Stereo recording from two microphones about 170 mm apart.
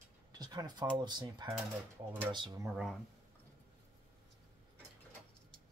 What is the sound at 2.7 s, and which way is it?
Speech, centre (ahead or behind).